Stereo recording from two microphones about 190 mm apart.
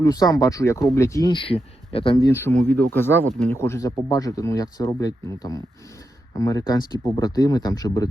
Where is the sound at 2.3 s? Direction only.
15° left (ahead or behind).